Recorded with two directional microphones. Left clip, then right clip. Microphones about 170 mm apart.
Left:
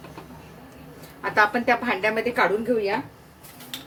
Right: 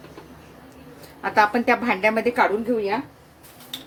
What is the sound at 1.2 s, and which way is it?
A woman's voice, 35° right (ahead or behind).